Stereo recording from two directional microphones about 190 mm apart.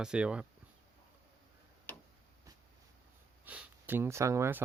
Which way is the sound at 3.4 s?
10° right (ahead or behind).